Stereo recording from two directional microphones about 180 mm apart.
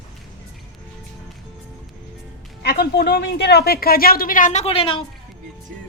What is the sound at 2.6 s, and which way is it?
A woman's voice, 65° left (ahead or behind).